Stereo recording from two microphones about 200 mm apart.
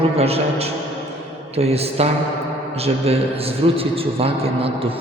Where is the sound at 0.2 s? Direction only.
30° right (ahead or behind).